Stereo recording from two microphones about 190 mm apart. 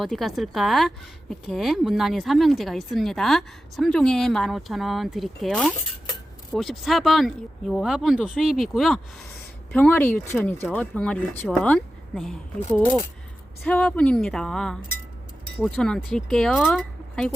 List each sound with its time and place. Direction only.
0.0 s a woman's voice: centre (ahead or behind)